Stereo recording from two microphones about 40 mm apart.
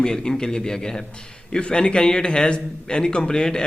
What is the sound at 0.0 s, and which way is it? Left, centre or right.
A man's voice, centre.